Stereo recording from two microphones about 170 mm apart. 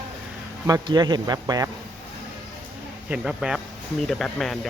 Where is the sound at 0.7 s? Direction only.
25° right (ahead or behind).